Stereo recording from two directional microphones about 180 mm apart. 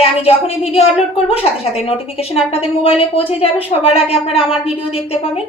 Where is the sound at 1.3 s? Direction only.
35° left (ahead or behind).